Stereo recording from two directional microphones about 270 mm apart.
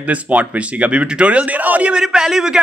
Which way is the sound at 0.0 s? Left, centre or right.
Centre.